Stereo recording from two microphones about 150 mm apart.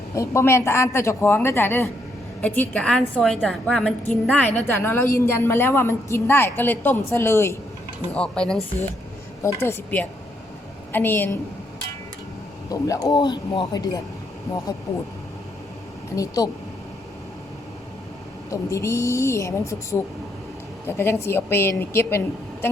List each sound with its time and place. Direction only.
0.1 s a woman's voice: 20° left (ahead or behind)
8.1 s speech: 5° left (ahead or behind)
9.4 s a woman's voice: 20° left (ahead or behind)
12.6 s speech: 25° left (ahead or behind)
16.1 s speech: 25° left (ahead or behind)
18.5 s a woman's voice: 20° left (ahead or behind)